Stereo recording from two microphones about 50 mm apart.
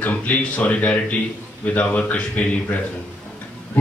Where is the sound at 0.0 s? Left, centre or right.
Left.